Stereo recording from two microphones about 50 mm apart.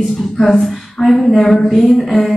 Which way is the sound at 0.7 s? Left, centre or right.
Centre.